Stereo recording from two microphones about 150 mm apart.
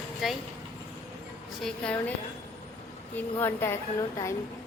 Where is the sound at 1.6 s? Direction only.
10° left (ahead or behind).